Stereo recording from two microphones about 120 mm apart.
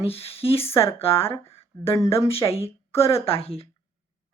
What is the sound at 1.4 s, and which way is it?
Speech, 25° left (ahead or behind).